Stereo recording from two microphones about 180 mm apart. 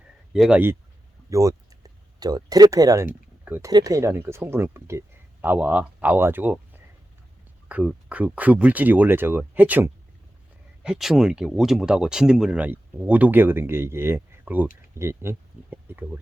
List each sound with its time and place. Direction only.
0.3 s speech: centre (ahead or behind)
1.3 s speech: 20° right (ahead or behind)
7.7 s speech: 10° right (ahead or behind)